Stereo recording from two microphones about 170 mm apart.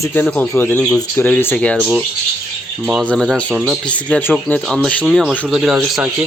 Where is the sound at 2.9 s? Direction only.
5° left (ahead or behind).